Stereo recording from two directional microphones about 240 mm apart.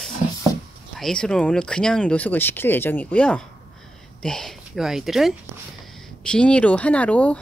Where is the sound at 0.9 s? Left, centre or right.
Centre.